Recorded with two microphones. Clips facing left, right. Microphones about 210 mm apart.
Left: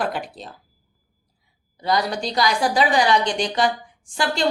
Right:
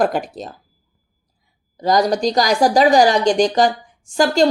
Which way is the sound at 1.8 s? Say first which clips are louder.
Right 7 dB; 45° right (ahead or behind).